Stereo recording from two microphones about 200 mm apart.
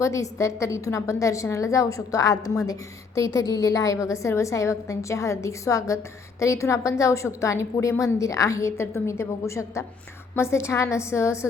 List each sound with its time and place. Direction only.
0.0 s a woman's voice: 15° left (ahead or behind)